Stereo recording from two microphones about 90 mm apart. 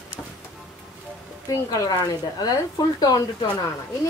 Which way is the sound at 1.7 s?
45° left (ahead or behind).